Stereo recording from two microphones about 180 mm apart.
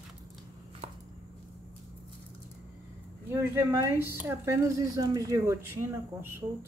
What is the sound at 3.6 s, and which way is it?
Speech, 10° right (ahead or behind).